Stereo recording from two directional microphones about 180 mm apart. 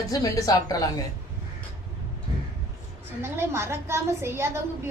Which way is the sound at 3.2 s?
15° right (ahead or behind).